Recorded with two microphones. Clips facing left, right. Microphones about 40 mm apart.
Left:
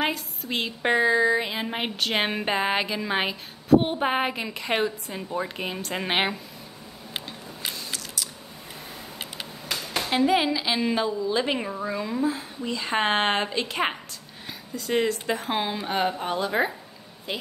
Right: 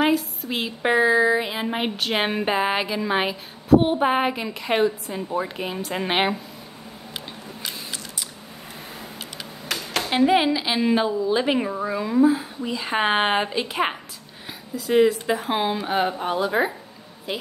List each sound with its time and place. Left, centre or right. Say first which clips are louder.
0.0 s speech: right 6 dB; centre
10.0 s a woman's voice: right 3 dB; centre